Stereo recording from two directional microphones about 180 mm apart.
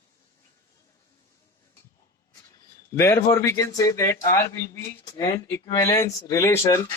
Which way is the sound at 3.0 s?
15° left (ahead or behind).